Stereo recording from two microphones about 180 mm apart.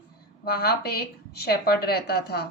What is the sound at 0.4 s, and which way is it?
A woman's voice, 60° left (ahead or behind).